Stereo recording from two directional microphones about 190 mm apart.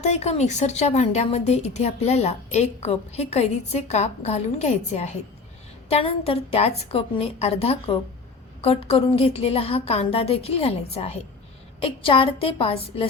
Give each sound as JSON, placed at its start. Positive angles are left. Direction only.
{"t": 0.0, "sound": "a woman's voice", "side_deg": 35}